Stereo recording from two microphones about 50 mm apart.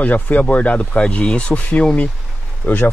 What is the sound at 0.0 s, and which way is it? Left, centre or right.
Speech, left.